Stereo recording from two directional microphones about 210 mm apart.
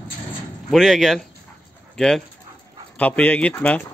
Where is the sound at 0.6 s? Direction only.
Centre (ahead or behind).